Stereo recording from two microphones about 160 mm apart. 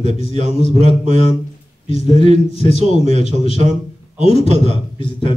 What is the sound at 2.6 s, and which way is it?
Speech, 45° right (ahead or behind).